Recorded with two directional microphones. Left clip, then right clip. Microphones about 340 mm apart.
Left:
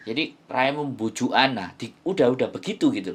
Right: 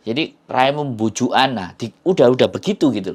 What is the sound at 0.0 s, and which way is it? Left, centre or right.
Speech, right.